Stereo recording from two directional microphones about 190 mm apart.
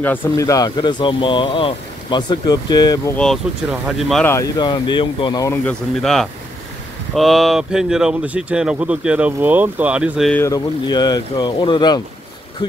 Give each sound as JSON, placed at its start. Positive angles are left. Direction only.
{"t": 0.0, "sound": "speech", "side_deg": 10}
{"t": 3.7, "sound": "speech", "side_deg": 0}
{"t": 4.3, "sound": "speech", "side_deg": 20}
{"t": 5.5, "sound": "speech", "side_deg": 5}
{"t": 10.3, "sound": "speech", "side_deg": 15}